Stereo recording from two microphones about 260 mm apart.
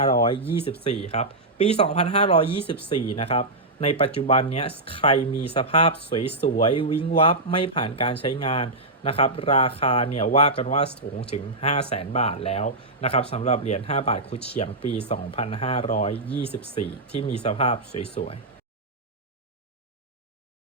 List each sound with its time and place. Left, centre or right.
0.0 s speech: centre
10.8 s speech: left
11.3 s speech: left
16.1 s speech: centre
17.2 s speech: left